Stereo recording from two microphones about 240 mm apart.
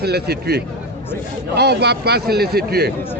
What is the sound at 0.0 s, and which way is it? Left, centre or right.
A man's voice, right.